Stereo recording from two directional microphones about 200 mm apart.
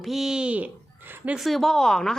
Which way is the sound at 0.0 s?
Centre (ahead or behind).